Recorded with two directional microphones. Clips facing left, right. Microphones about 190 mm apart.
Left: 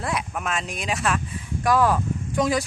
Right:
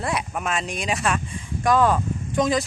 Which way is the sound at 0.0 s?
Centre (ahead or behind).